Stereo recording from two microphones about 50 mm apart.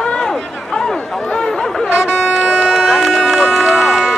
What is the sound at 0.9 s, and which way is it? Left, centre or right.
Chatter, centre.